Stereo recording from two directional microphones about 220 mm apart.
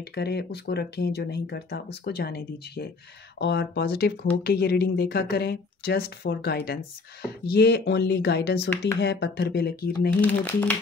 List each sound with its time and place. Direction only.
0.1 s speech: 50° left (ahead or behind)
10.2 s speech: 5° left (ahead or behind)